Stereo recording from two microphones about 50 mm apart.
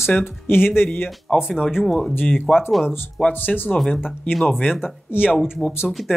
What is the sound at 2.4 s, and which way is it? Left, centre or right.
Speech, left.